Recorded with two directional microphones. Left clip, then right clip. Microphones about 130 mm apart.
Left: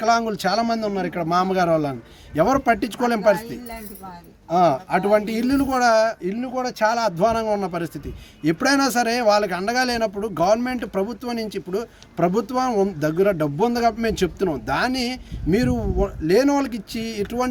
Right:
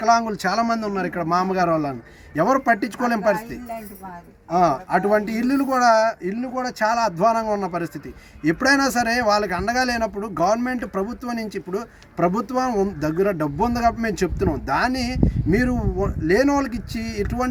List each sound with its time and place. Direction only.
0.0 s a man's voice: 15° left (ahead or behind)
1.3 s speech: 15° left (ahead or behind)
4.5 s speech: 10° left (ahead or behind)
6.3 s speech: 5° left (ahead or behind)